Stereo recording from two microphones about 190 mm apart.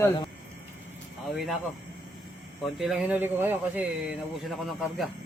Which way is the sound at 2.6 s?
Centre (ahead or behind).